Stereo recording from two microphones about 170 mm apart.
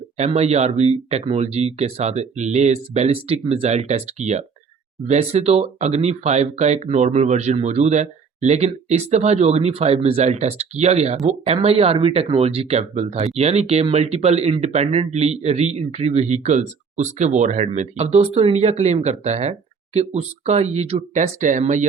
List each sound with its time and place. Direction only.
0.2 s speech: 40° right (ahead or behind)